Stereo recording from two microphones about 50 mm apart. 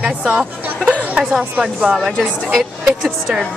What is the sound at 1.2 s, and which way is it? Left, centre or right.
Speech, right.